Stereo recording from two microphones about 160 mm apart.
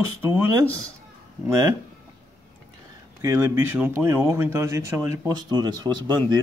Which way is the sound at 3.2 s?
20° right (ahead or behind).